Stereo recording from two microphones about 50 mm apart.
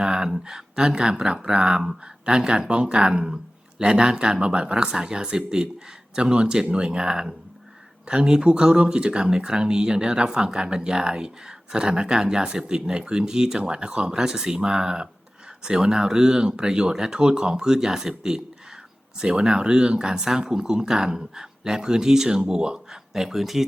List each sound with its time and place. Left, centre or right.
0.0 s speech: centre